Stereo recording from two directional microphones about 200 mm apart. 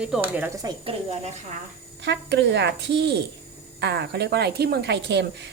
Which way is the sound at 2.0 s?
60° right (ahead or behind).